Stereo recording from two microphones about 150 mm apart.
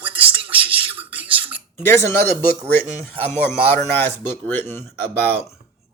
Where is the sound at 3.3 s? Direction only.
15° left (ahead or behind).